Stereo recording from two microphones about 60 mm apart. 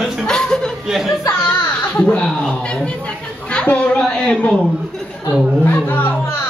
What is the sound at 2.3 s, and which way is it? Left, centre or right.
Speech, centre.